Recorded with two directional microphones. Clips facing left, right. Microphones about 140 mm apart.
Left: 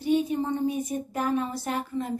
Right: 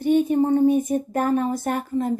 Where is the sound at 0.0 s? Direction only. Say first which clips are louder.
Right 6 dB; 55° right (ahead or behind).